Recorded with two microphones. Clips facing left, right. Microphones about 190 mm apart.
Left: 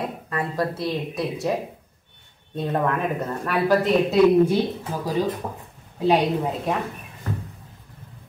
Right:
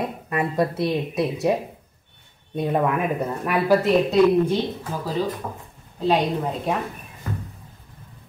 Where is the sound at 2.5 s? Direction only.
10° right (ahead or behind).